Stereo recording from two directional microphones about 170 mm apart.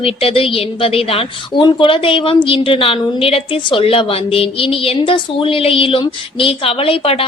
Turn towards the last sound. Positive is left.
turn(degrees=35)  # may be behind; listen again after turning